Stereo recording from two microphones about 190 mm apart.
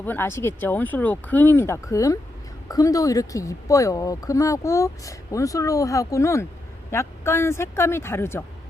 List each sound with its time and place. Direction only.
0.0 s speech: 10° left (ahead or behind)